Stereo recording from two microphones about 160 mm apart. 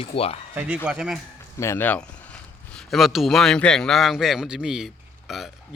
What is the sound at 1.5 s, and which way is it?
Speech, 15° left (ahead or behind).